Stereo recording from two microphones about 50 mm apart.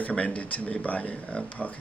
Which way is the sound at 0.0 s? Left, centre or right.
Left.